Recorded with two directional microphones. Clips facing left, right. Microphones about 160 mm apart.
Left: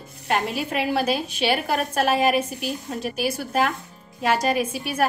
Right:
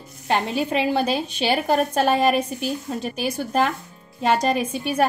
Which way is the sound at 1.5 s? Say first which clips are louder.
Right 5 dB; 30° right (ahead or behind).